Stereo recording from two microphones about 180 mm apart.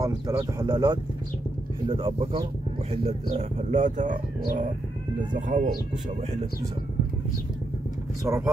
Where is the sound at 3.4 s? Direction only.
40° right (ahead or behind).